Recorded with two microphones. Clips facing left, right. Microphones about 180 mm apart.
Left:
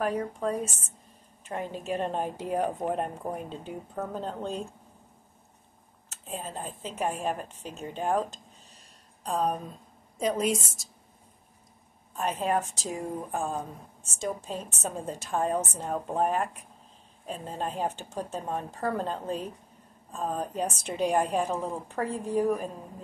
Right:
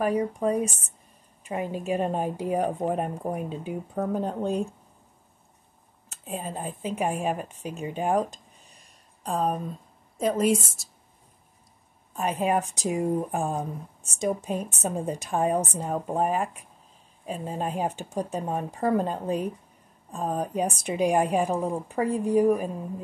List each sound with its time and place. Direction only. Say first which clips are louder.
0.0 s speech: right 4 dB; 10° right (ahead or behind)
6.2 s a woman's voice: right 4 dB; 10° right (ahead or behind)
12.2 s speech: right 3 dB; 10° right (ahead or behind)